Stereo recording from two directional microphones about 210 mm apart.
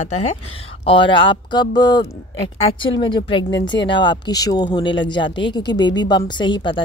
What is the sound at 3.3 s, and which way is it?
Speech, 25° left (ahead or behind).